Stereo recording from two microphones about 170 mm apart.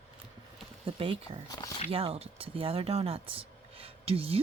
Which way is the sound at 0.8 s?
30° right (ahead or behind).